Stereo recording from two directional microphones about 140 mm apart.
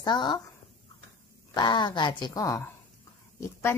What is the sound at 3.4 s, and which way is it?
Speech, 20° left (ahead or behind).